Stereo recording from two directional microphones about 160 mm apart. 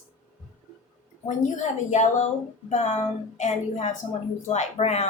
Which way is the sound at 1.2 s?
50° left (ahead or behind).